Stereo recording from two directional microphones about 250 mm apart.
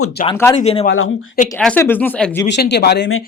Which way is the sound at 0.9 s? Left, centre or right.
Left.